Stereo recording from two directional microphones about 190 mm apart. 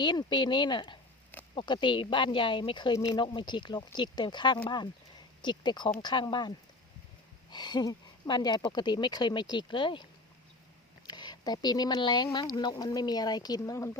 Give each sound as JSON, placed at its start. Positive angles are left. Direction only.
{"t": 0.0, "sound": "speech", "side_deg": 25}
{"t": 7.5, "sound": "speech", "side_deg": 25}